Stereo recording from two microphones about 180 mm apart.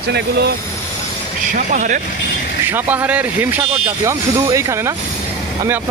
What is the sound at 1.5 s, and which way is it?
Speech, 45° right (ahead or behind).